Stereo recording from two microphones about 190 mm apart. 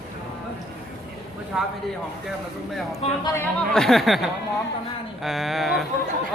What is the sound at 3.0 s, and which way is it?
Speech, 35° left (ahead or behind).